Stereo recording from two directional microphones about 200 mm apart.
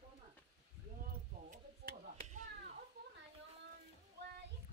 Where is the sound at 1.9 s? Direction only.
45° right (ahead or behind).